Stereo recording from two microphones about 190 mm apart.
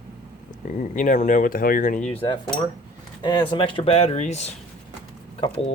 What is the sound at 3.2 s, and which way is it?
Speech, 25° left (ahead or behind).